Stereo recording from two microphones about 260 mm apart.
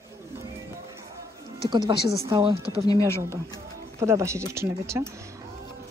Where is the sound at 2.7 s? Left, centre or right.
Centre.